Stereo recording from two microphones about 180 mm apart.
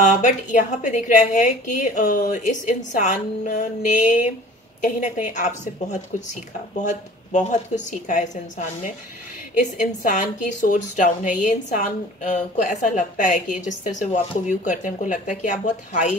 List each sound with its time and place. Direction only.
0.0 s a woman's voice: 45° left (ahead or behind)
8.1 s a woman's voice: 45° left (ahead or behind)